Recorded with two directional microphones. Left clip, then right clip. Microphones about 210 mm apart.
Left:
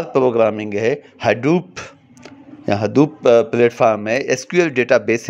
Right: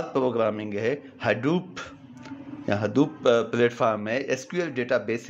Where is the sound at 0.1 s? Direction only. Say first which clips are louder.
Left 10 dB; 30° left (ahead or behind).